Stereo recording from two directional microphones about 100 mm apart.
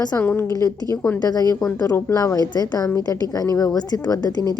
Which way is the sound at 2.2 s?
40° left (ahead or behind).